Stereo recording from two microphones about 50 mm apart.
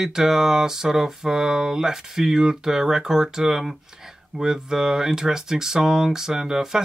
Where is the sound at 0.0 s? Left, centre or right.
Centre.